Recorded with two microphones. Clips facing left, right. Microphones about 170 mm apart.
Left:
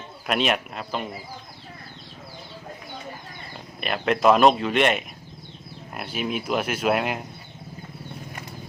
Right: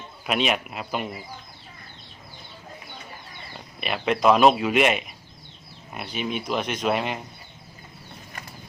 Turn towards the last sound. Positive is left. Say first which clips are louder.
# left 2 dB
turn(degrees=5)  # may be behind; listen again after turning